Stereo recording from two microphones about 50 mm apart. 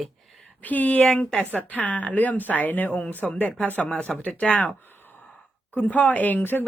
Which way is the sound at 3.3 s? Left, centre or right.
Left.